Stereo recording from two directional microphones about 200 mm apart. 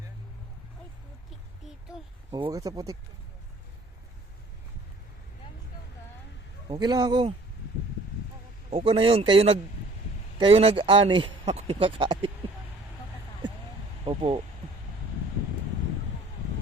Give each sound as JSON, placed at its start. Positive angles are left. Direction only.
{"t": 2.3, "sound": "speech", "side_deg": -15}
{"t": 6.7, "sound": "speech", "side_deg": -20}
{"t": 8.7, "sound": "speech", "side_deg": -25}
{"t": 14.0, "sound": "speech", "side_deg": -25}